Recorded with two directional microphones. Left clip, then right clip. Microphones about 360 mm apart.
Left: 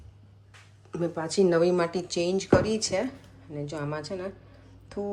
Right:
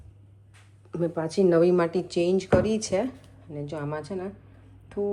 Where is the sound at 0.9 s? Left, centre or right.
Centre.